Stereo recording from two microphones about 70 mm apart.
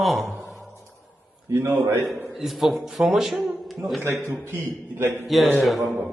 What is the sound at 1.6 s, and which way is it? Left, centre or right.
Speech, right.